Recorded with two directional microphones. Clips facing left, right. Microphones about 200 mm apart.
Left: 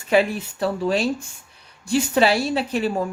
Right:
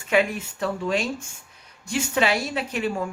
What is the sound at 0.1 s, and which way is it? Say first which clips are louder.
Speech: left 3 dB; 35° left (ahead or behind).